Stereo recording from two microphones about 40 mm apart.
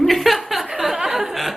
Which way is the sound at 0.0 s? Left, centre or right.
Centre.